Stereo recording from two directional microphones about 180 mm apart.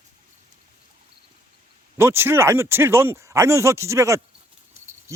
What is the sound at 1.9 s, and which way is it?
Speech, 15° right (ahead or behind).